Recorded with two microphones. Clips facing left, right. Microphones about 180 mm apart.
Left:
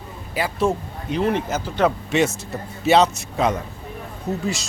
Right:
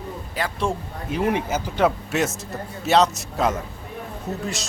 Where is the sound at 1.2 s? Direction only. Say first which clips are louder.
Left 1 dB; 10° right (ahead or behind).